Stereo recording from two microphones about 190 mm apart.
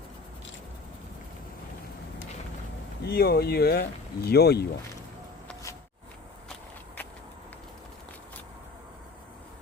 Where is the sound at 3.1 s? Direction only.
55° left (ahead or behind).